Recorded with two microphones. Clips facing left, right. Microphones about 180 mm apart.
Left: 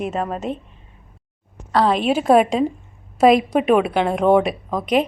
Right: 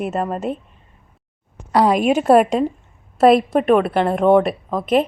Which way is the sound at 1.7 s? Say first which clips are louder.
Right 2 dB; 15° right (ahead or behind).